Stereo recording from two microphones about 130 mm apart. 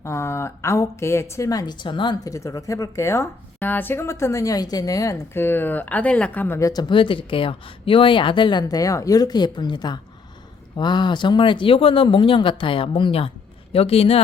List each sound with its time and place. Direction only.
0.0 s speech: 20° left (ahead or behind); by 2.3 s 35° left (ahead or behind)
2.3 s speech: 25° left (ahead or behind); by 14.2 s 50° left (ahead or behind)